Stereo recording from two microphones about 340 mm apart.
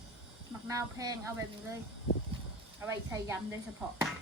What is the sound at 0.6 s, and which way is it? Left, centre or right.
Speech, centre.